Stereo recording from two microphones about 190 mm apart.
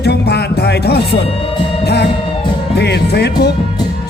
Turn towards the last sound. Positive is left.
turn(degrees=60)  # may be behind; listen again after turning